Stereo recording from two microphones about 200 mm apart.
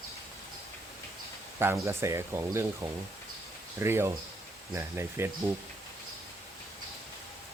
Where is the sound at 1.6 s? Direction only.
15° right (ahead or behind).